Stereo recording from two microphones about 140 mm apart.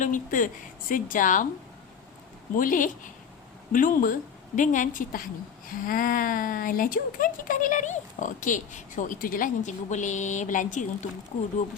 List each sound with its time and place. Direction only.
0.0 s speech: 70° left (ahead or behind)
2.6 s speech: 75° left (ahead or behind)
5.6 s speech: 80° left; by 10.8 s 65° left (ahead or behind)